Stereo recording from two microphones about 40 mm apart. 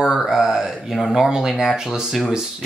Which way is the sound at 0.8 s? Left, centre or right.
Centre.